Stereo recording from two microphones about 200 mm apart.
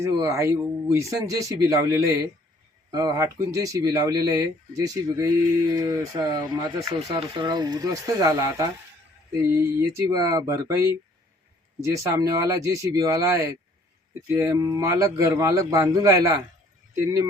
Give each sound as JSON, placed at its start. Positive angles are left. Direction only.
{"t": 0.0, "sound": "speech", "side_deg": -15}